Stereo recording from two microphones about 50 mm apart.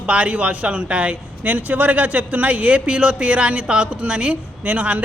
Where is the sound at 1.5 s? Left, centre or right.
Right.